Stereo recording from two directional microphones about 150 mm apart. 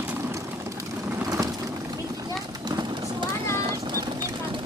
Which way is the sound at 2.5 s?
25° right (ahead or behind).